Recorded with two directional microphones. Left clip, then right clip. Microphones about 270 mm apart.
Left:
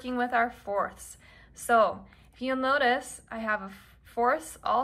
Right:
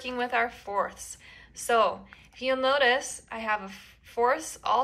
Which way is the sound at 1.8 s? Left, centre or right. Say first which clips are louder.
Right 2 dB; centre.